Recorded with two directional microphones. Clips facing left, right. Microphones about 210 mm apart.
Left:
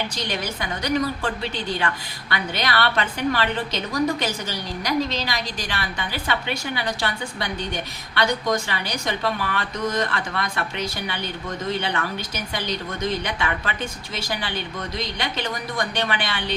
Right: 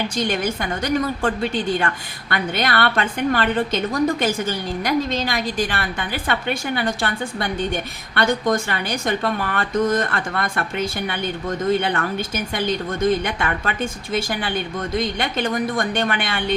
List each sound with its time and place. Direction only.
0.2 s a woman's voice: 50° right (ahead or behind)